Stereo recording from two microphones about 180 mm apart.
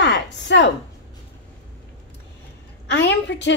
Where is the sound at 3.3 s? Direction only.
85° left.